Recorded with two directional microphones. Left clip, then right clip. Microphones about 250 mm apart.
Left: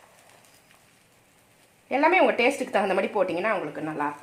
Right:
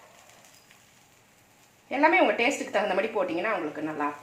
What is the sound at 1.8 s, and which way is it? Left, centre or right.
Speech, left.